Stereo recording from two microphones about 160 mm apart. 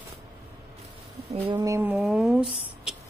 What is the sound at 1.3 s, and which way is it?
Speech, 35° right (ahead or behind).